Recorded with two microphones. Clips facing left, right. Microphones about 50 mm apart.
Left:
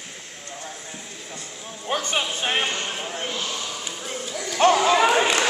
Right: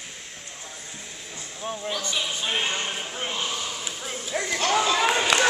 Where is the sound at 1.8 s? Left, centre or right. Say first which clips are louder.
Left 6 dB; left.